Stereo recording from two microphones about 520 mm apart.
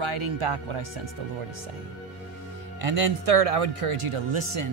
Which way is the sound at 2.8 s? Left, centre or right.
Right.